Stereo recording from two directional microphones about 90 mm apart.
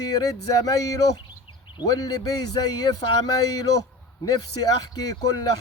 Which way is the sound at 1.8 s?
45° left (ahead or behind).